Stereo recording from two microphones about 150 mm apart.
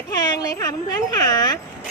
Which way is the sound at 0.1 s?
25° left (ahead or behind).